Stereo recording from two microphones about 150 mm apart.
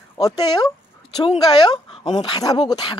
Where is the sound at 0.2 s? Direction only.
25° left (ahead or behind).